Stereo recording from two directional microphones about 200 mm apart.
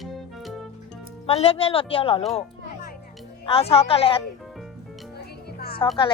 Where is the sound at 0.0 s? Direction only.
Centre (ahead or behind).